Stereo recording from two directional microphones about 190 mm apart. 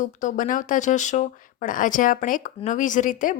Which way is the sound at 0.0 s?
40° left (ahead or behind).